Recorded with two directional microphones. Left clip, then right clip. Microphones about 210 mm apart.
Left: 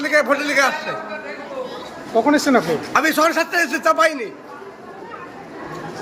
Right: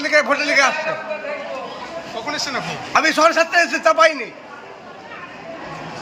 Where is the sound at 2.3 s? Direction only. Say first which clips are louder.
Left 5 dB; 35° left (ahead or behind).